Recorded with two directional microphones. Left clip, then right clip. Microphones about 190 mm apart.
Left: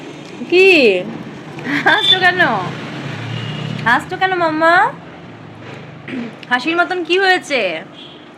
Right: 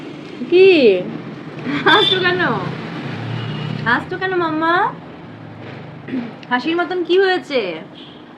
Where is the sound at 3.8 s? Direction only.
25° left (ahead or behind).